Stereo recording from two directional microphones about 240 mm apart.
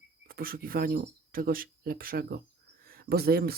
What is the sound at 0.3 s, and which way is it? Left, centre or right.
Speech, right.